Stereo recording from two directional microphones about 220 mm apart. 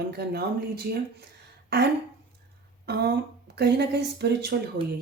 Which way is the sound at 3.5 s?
50° right (ahead or behind).